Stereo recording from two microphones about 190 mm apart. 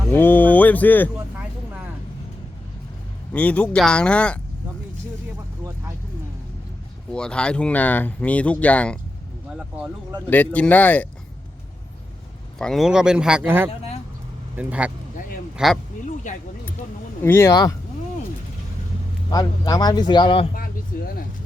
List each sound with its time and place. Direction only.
0.1 s speech: 10° left (ahead or behind)
3.3 s speech: 5° left (ahead or behind)
7.1 s speech: 5° left (ahead or behind)
9.5 s speech: 5° right (ahead or behind)
10.2 s speech: 10° left (ahead or behind)
12.5 s speech: centre (ahead or behind)
13.7 s speech: 30° left (ahead or behind)
14.5 s speech: 5° right (ahead or behind)
16.3 s speech: 40° left (ahead or behind)
17.2 s speech: 15° left (ahead or behind)
19.3 s speech: 20° left (ahead or behind)